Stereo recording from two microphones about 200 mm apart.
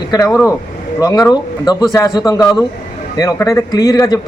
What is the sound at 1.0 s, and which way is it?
A man's voice, 20° left (ahead or behind).